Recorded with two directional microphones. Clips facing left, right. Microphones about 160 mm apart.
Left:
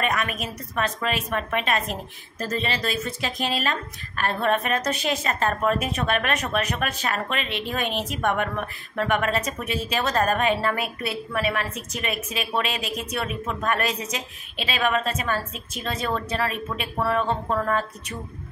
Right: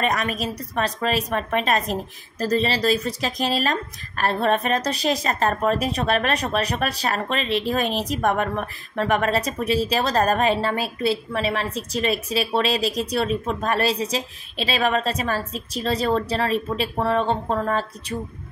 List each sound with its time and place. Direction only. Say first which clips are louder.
0.0 s a woman's voice: right 3 dB; 35° right (ahead or behind)